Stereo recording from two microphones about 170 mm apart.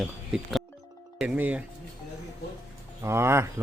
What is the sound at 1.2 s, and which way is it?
Speech, 5° right (ahead or behind).